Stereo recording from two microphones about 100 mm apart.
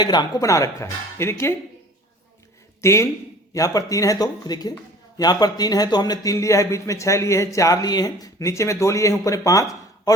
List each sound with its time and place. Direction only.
0.0 s a man's voice: 45° left (ahead or behind); by 1.5 s 25° left (ahead or behind)
2.8 s a man's voice: 30° left (ahead or behind)